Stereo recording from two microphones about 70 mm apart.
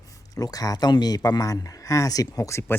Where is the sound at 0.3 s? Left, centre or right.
Left.